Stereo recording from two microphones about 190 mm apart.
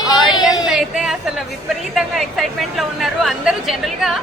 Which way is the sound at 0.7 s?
Centre (ahead or behind).